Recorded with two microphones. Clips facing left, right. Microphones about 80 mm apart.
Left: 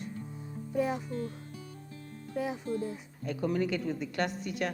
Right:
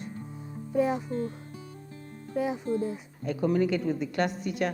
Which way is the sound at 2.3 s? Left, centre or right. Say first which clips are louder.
Right 5 dB; right.